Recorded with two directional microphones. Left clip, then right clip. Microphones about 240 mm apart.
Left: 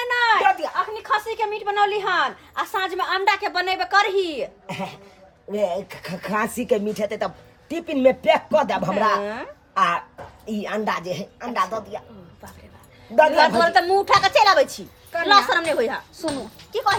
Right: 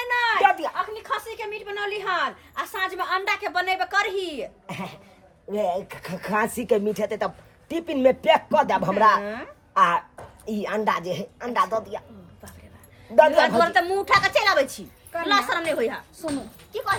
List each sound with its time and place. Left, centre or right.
0.0 s a sound: centre
1.0 s a woman's voice: centre
4.6 s speech: centre
9.2 s a woman's voice: centre
9.7 s speech: centre
13.6 s a woman's voice: centre
16.2 s a woman's voice: left